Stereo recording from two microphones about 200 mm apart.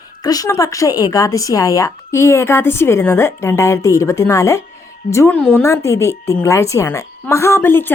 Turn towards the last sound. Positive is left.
turn(degrees=10)  # may be behind; listen again after turning